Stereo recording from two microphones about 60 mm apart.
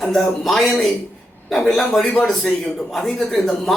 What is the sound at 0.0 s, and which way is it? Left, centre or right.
Speech, centre.